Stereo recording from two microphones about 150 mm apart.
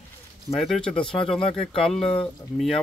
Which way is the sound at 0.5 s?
Centre (ahead or behind).